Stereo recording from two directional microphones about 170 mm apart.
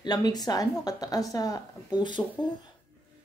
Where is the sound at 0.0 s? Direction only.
25° left (ahead or behind).